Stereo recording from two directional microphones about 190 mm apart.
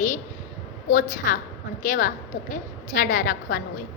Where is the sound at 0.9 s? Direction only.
45° left (ahead or behind).